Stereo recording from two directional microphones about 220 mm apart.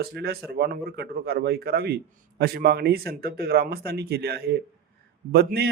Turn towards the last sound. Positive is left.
turn(degrees=-45)  # may be behind; listen again after turning